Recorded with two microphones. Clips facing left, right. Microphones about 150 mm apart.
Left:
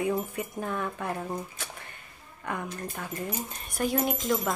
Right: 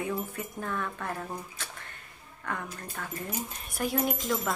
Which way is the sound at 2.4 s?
15° left (ahead or behind).